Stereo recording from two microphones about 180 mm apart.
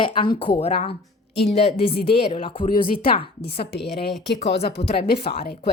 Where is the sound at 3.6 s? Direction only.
65° left (ahead or behind).